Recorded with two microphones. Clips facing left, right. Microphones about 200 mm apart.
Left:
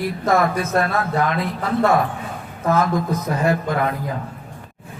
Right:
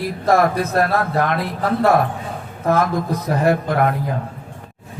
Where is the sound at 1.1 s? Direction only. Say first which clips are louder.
Right 1 dB; 60° right (ahead or behind).